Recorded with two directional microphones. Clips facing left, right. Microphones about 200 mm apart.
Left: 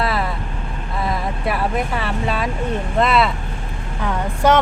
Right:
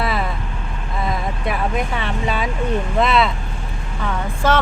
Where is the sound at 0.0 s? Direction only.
Centre (ahead or behind).